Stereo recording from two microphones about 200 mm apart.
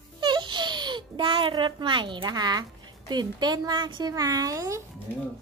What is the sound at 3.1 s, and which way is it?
Speech, 20° right (ahead or behind).